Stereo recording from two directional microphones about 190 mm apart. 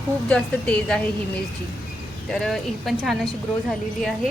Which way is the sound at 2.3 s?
Centre (ahead or behind).